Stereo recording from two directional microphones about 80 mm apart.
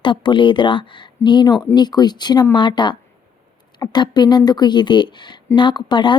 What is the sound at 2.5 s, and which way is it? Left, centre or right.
Speech, left.